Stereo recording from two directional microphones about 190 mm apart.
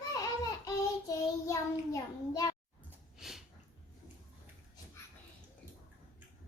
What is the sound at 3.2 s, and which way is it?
Snort, centre (ahead or behind).